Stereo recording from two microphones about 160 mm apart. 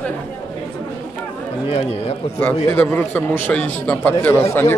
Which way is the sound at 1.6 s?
40° left (ahead or behind).